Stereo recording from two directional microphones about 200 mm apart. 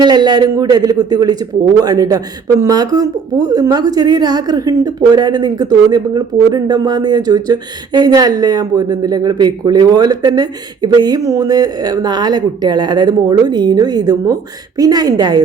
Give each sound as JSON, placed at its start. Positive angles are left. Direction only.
{"t": 0.0, "sound": "speech", "side_deg": -20}